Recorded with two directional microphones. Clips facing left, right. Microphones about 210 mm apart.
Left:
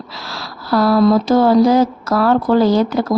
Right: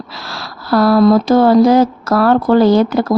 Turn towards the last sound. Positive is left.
turn(degrees=-60)  # may be behind; listen again after turning